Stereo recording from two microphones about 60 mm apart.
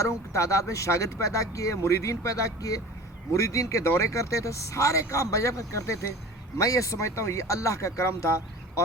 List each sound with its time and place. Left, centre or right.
0.0 s speech: left
3.3 s speech: left